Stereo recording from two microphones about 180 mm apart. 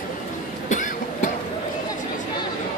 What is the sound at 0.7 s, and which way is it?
Cough, 45° left (ahead or behind).